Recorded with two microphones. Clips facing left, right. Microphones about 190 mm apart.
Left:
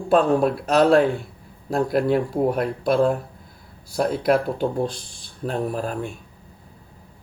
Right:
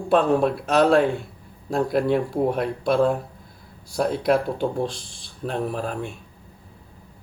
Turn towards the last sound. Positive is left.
turn(degrees=0)  # may be behind; listen again after turning